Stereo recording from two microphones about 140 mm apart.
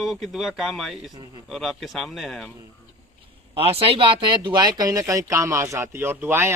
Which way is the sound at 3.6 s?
45° right (ahead or behind).